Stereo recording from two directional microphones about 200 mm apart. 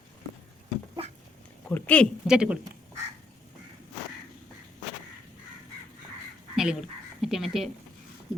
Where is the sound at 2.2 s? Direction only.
5° right (ahead or behind).